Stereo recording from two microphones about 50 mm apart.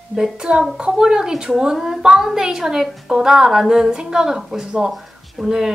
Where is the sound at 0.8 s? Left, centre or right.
Centre.